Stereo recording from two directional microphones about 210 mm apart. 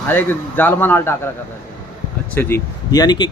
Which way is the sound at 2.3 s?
10° left (ahead or behind).